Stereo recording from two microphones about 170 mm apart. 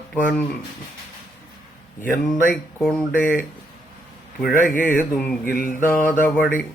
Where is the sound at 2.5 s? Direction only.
5° left (ahead or behind).